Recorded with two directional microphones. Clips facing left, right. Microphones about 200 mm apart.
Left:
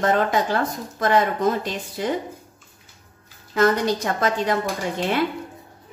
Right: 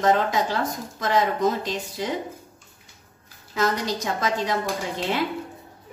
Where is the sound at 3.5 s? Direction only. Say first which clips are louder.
Left 5 dB; 55° left (ahead or behind).